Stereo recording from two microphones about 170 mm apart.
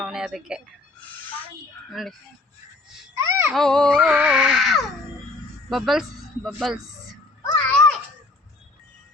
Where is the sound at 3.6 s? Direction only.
5° left (ahead or behind).